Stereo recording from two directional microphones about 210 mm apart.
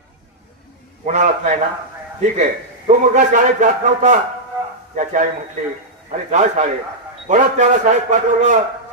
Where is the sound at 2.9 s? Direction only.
35° right (ahead or behind).